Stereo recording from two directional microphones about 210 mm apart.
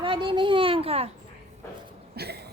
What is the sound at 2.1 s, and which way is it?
Cough, 50° right (ahead or behind).